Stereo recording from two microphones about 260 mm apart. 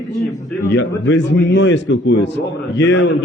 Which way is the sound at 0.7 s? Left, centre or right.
Left.